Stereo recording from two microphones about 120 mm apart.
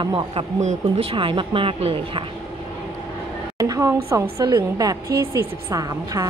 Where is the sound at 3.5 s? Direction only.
30° right (ahead or behind).